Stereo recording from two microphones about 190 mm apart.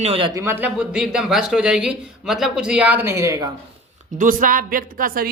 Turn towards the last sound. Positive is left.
turn(degrees=-50)  # may be behind; listen again after turning